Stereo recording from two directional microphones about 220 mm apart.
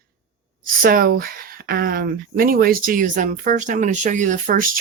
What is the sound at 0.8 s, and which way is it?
Speech, 40° right (ahead or behind).